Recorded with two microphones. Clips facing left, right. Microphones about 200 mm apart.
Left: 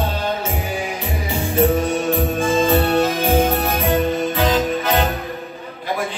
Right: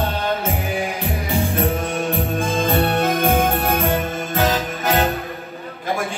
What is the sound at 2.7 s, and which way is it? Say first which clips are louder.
Music: left 2 dB; 55° right (ahead or behind).